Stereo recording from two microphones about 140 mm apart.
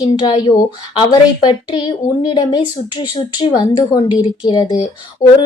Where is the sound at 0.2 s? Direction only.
35° left (ahead or behind).